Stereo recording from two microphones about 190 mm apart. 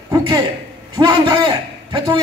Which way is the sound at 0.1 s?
25° right (ahead or behind).